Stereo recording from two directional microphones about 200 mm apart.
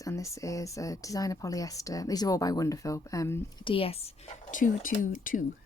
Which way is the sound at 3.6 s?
25° left (ahead or behind).